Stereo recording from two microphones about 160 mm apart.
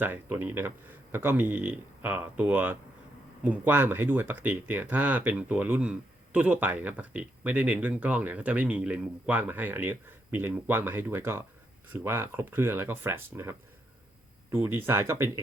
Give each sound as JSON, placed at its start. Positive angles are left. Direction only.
{"t": 0.0, "sound": "speech", "side_deg": -10}